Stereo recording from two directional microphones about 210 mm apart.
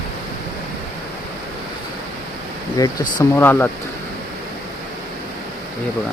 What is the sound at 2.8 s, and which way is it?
Speech, 15° left (ahead or behind).